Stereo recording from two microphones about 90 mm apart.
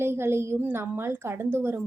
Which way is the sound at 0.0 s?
25° right (ahead or behind).